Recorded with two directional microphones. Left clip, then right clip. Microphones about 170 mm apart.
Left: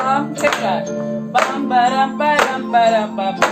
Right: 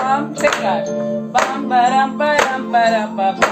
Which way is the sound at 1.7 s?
40° left (ahead or behind).